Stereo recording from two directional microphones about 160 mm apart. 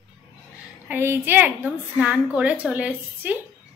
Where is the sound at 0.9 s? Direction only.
15° right (ahead or behind).